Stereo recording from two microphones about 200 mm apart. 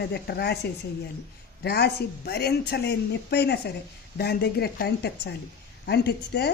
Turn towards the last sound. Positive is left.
turn(degrees=55)  # may be behind; listen again after turning